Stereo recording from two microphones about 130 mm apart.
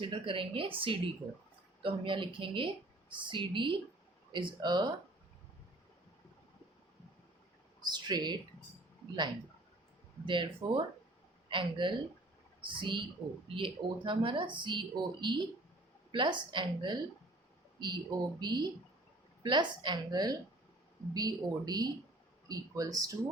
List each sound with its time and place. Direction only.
0.0 s a woman's voice: 40° right (ahead or behind)
7.8 s a sound: 35° right (ahead or behind)
10.2 s a woman's voice: 40° right (ahead or behind)